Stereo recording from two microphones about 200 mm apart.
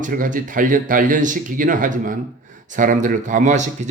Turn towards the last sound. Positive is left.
turn(degrees=-40)  # may be behind; listen again after turning